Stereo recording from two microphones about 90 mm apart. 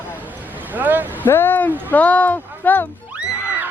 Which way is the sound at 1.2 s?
25° left (ahead or behind).